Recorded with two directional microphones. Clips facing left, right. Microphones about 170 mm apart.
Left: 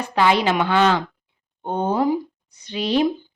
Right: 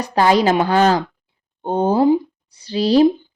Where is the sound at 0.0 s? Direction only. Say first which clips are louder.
Right 4 dB; 40° right (ahead or behind).